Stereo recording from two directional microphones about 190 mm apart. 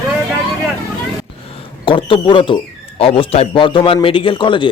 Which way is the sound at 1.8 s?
25° left (ahead or behind).